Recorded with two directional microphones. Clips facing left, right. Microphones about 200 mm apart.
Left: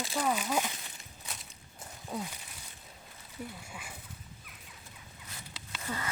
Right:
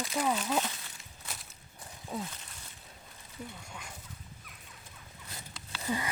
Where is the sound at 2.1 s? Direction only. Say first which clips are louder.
Even; centre (ahead or behind).